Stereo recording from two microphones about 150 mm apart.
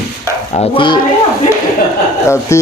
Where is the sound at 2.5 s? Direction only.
20° left (ahead or behind).